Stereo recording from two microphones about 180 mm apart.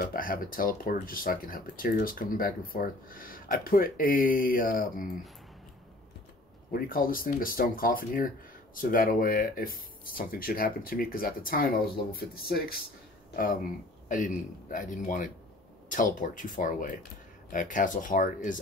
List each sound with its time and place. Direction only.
0.0 s speech: 50° left (ahead or behind)
6.7 s speech: 50° left (ahead or behind)
14.0 s speech: 45° left (ahead or behind)